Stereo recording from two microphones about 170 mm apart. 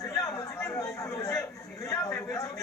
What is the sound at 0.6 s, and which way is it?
Chatter, 15° left (ahead or behind).